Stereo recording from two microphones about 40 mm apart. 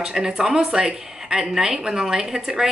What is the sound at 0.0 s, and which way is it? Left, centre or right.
Speech, centre.